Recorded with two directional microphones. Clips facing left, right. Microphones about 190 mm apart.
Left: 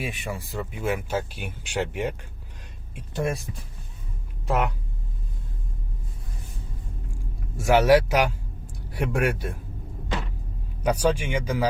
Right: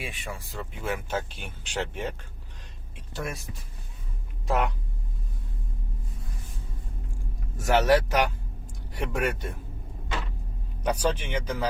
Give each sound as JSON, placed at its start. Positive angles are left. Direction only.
{"t": 0.0, "sound": "speech", "side_deg": 10}
{"t": 4.4, "sound": "speech", "side_deg": 0}
{"t": 7.5, "sound": "a man's voice", "side_deg": 10}
{"t": 10.8, "sound": "speech", "side_deg": 10}